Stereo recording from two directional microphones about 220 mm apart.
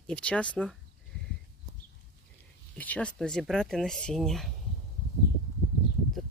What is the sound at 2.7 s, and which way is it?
Speech, 5° left (ahead or behind).